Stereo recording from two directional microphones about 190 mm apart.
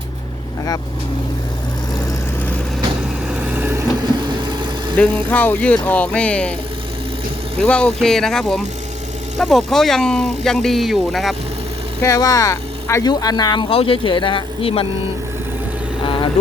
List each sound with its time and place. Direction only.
3.2 s vehicle: 10° right (ahead or behind)
4.2 s vehicle: 25° right (ahead or behind)
4.9 s speech: 10° left (ahead or behind)
7.6 s speech: 5° left (ahead or behind)
12.0 s speech: 15° left (ahead or behind)